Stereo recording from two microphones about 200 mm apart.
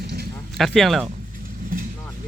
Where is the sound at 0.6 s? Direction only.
Centre (ahead or behind).